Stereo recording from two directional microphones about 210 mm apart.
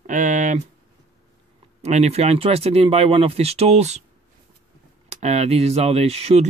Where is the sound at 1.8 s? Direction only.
30° right (ahead or behind).